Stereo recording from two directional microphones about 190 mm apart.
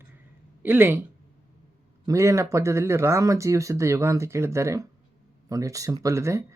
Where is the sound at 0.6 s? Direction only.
10° right (ahead or behind).